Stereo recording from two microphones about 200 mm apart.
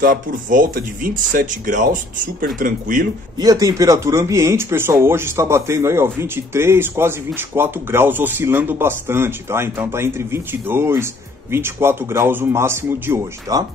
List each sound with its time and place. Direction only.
0.0 s speech: 45° right (ahead or behind)
3.3 s speech: 20° right (ahead or behind)